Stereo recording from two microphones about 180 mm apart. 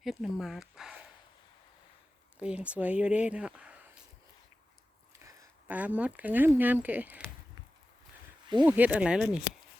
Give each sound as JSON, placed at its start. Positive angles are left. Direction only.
{"t": 0.0, "sound": "speech", "side_deg": 0}
{"t": 2.4, "sound": "speech", "side_deg": -5}
{"t": 5.2, "sound": "speech", "side_deg": -15}
{"t": 8.6, "sound": "speech", "side_deg": -10}